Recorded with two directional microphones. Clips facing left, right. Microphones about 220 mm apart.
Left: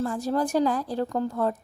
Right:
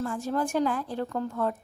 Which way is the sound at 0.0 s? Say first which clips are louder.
Left 3 dB; 35° left (ahead or behind).